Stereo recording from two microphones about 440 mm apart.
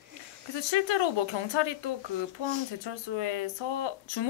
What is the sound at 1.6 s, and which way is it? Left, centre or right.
Speech, left.